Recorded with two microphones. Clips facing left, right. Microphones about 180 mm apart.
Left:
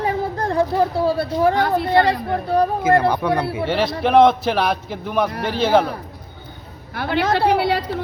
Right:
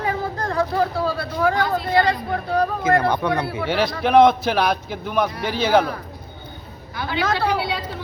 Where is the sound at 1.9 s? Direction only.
65° left (ahead or behind).